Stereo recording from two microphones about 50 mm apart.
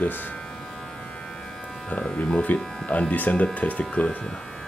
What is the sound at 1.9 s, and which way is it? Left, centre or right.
Speech, left.